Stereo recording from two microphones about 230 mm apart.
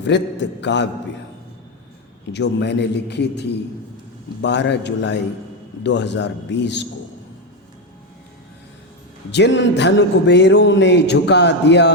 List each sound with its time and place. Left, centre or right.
0.1 s speech: left
2.3 s speech: left
9.3 s speech: left